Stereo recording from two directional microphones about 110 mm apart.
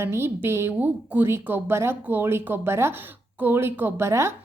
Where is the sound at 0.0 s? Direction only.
25° right (ahead or behind).